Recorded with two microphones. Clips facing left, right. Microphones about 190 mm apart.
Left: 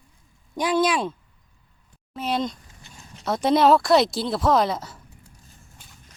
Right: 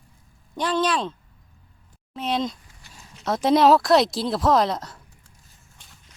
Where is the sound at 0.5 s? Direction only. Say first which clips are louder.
Left 2 dB; 10° left (ahead or behind).